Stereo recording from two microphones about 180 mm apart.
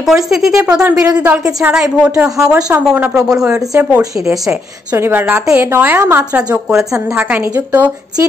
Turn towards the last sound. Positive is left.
turn(degrees=-10)  # may be behind; listen again after turning